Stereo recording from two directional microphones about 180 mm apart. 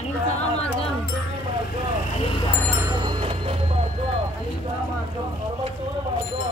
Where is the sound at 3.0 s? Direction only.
25° right (ahead or behind).